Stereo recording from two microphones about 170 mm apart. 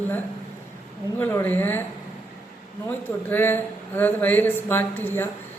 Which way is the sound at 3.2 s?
10° left (ahead or behind).